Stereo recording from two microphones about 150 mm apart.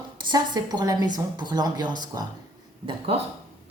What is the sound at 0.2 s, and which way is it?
Speech, 30° right (ahead or behind).